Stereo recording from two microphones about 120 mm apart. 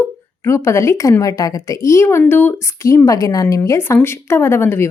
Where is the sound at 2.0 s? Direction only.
15° left (ahead or behind).